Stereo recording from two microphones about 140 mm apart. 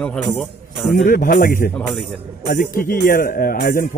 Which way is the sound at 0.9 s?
80° left.